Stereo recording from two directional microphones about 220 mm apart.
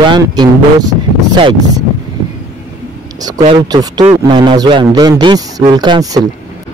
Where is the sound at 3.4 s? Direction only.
25° right (ahead or behind).